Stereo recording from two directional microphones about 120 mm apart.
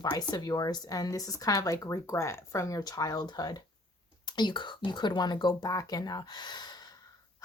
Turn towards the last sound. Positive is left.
turn(degrees=35)  # may be behind; listen again after turning